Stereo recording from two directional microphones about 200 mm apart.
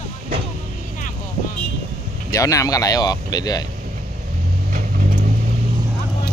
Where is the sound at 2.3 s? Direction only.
15° left (ahead or behind).